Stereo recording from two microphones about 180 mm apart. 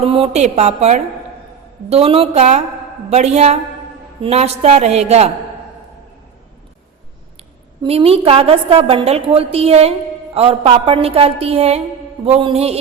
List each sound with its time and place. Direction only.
0.1 s a woman's voice: 35° right (ahead or behind)
7.8 s a woman's voice: 30° right (ahead or behind)